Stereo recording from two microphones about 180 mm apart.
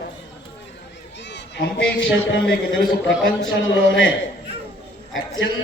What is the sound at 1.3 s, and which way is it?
A man's voice, 85° left.